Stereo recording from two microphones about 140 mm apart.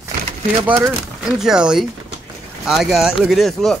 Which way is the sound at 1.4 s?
5° right (ahead or behind).